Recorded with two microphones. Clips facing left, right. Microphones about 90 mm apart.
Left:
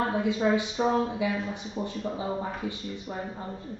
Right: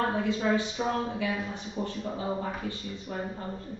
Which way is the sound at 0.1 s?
15° left (ahead or behind).